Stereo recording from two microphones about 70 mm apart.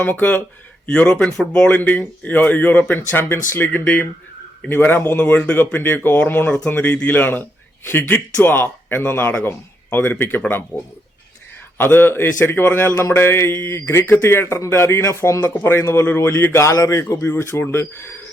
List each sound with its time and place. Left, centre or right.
0.0 s speech: left
3.7 s speech: left
11.8 s a man's voice: left
17.0 s speech: left